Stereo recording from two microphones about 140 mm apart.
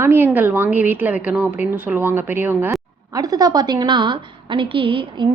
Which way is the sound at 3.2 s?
25° right (ahead or behind).